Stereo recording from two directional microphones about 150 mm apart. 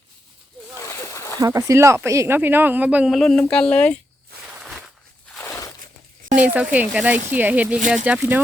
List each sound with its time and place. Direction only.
0.9 s a sound: 20° left (ahead or behind)
1.4 s speech: 20° right (ahead or behind); by 3.9 s 5° left (ahead or behind)
5.4 s crushing: 20° left (ahead or behind)
6.3 s speech: 10° right (ahead or behind)